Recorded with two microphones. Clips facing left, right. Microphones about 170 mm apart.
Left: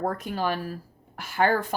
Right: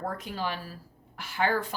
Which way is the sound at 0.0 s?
50° left (ahead or behind).